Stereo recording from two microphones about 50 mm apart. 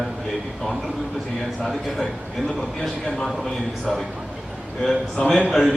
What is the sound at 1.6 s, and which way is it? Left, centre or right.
Speech, centre.